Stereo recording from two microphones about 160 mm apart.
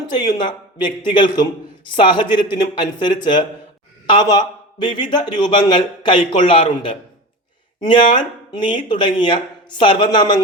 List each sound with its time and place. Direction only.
0.3 s a man's voice: 30° left (ahead or behind)